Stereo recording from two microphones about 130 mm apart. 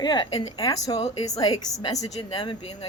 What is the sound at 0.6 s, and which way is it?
Speech, 25° left (ahead or behind).